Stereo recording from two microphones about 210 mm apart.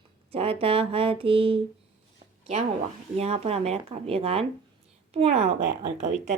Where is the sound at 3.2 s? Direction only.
30° right (ahead or behind).